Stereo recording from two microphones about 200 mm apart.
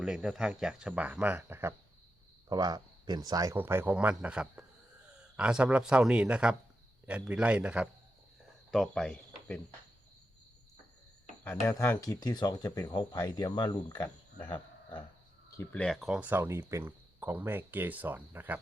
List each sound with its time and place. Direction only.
0.0 s speech: 5° right (ahead or behind)
8.7 s cricket: 5° left (ahead or behind)
11.4 s speech: 15° left (ahead or behind)
15.5 s speech: 5° left (ahead or behind); by 18.6 s 10° right (ahead or behind)